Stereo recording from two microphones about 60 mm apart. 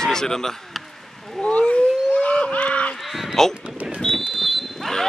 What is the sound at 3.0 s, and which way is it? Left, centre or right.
Honk, centre.